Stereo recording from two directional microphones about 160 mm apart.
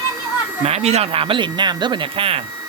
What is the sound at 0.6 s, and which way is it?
Speech, 40° right (ahead or behind).